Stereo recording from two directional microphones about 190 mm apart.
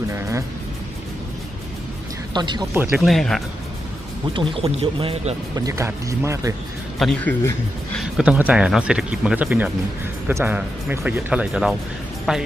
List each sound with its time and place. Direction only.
0.1 s speech: 15° right (ahead or behind)
2.3 s speech: 25° right (ahead or behind)
3.0 s speech: centre (ahead or behind)
4.4 s speech: 30° right (ahead or behind)
5.5 s speech: 15° right (ahead or behind)
7.0 s speech: centre (ahead or behind)